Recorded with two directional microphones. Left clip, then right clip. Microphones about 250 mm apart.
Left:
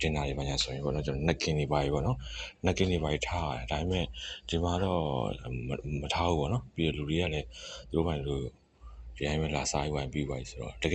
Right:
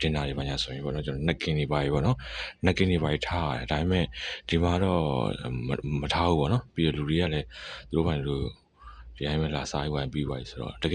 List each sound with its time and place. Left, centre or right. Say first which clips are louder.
0.0 s speech: right 2 dB; centre